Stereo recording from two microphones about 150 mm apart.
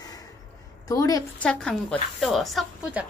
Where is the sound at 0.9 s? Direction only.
25° left (ahead or behind).